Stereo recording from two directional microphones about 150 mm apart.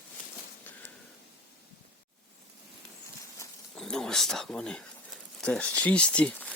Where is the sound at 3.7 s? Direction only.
5° left (ahead or behind).